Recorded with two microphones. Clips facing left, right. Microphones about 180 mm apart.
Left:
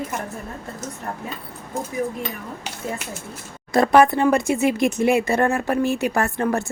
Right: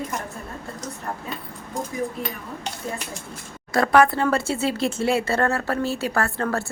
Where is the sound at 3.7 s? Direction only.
20° left (ahead or behind).